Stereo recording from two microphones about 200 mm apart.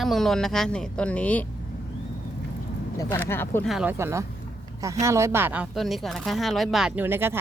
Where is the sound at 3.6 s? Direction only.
5° right (ahead or behind).